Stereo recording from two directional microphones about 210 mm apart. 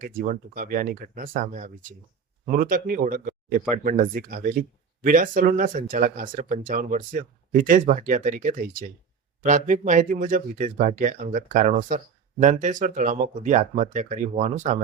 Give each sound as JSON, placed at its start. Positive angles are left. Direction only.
{"t": 0.2, "sound": "speech", "side_deg": -40}